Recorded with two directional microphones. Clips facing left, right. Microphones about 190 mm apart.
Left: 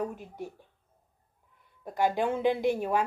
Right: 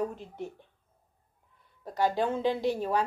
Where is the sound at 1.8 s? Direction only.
15° left (ahead or behind).